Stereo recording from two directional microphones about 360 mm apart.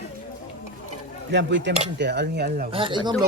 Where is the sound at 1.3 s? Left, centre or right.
Right.